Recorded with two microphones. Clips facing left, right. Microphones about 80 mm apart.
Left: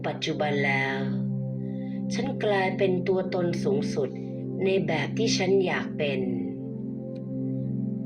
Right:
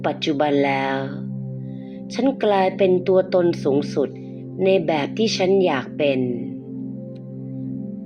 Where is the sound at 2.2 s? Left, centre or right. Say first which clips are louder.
Right 9 dB; right.